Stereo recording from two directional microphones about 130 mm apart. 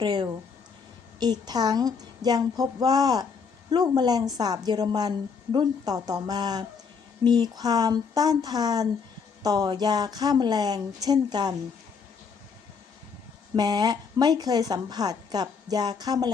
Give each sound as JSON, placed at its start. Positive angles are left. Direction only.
{"t": 0.0, "sound": "a woman's voice", "side_deg": -35}
{"t": 13.6, "sound": "a woman's voice", "side_deg": -30}